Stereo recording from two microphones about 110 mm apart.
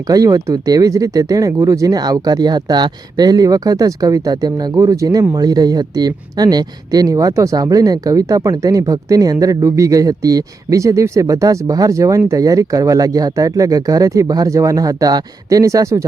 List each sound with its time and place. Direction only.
0.1 s speech: 30° right (ahead or behind)